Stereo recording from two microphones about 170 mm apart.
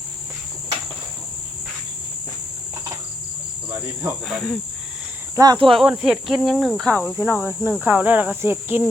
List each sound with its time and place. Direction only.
4.3 s speech: centre (ahead or behind)
5.4 s speech: 25° right (ahead or behind)
5.7 s speech: centre (ahead or behind)
7.2 s speech: 15° right (ahead or behind)